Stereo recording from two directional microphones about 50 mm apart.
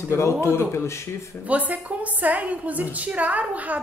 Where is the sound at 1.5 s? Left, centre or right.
Right.